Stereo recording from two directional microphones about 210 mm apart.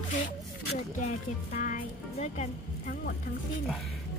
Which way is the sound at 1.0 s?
40° left (ahead or behind).